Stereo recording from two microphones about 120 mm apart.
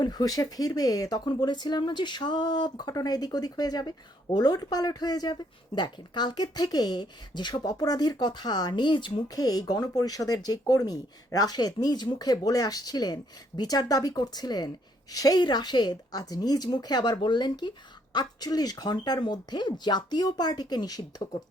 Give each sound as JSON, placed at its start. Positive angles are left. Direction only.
{"t": 0.0, "sound": "speech", "side_deg": 35}
{"t": 9.3, "sound": "speech", "side_deg": 30}